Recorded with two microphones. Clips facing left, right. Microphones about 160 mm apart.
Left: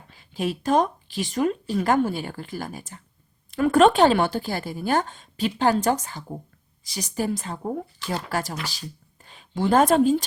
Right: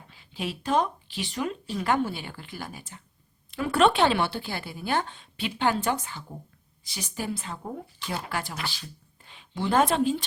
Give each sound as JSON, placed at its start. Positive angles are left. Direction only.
{"t": 0.1, "sound": "speech", "side_deg": 45}